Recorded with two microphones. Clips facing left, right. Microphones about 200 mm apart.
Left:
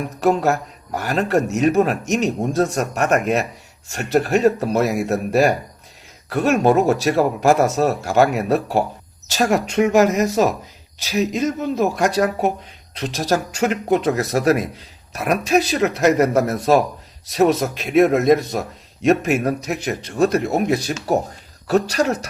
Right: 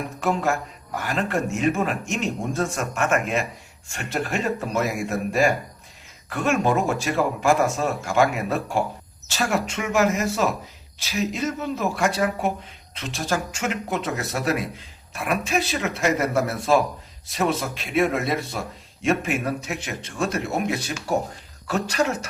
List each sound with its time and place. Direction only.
0.2 s speech: 40° left (ahead or behind)